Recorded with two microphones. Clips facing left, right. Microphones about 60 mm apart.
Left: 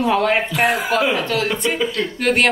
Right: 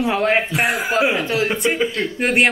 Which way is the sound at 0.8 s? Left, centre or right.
Centre.